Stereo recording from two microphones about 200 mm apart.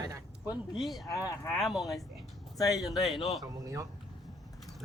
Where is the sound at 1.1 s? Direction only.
15° left (ahead or behind).